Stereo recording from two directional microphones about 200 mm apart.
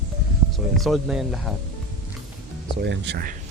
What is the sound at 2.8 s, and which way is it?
Speech, 55° right (ahead or behind).